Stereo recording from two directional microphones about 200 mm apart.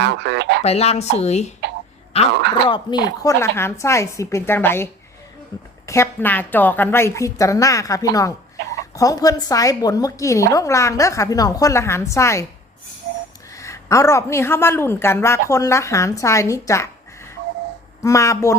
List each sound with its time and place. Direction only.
0.0 s speech: 60° right (ahead or behind)
0.6 s speech: 30° left (ahead or behind)
2.6 s speech: 25° left (ahead or behind)
3.2 s a woman's voice: 10° left (ahead or behind)
13.5 s a woman's voice: 15° left (ahead or behind)
18.0 s a woman's voice: 15° left (ahead or behind)